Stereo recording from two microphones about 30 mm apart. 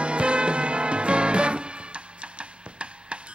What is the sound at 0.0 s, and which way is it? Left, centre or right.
Music, right.